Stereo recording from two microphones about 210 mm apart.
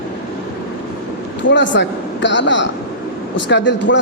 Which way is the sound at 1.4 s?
60° left (ahead or behind).